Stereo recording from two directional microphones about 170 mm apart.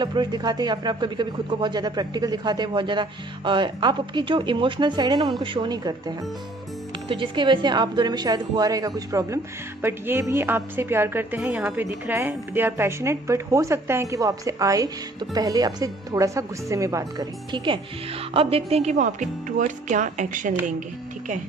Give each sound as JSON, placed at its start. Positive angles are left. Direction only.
{"t": 0.0, "sound": "a woman's voice", "side_deg": -25}
{"t": 18.3, "sound": "a woman's voice", "side_deg": -35}